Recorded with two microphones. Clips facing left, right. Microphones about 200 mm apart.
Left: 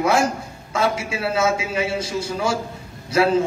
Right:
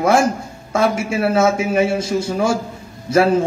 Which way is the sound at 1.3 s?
50° right (ahead or behind).